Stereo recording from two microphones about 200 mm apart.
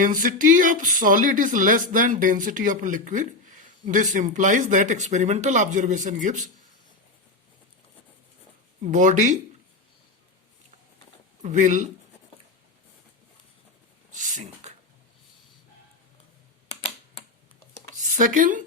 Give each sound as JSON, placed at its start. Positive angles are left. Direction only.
{"t": 0.0, "sound": "speech", "side_deg": -40}
{"t": 8.8, "sound": "speech", "side_deg": -40}
{"t": 11.4, "sound": "speech", "side_deg": -40}
{"t": 14.1, "sound": "a sound", "side_deg": -40}
{"t": 17.9, "sound": "speech", "side_deg": -40}